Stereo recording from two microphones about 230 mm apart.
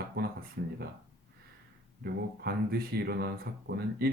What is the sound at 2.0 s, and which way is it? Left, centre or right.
Speech, right.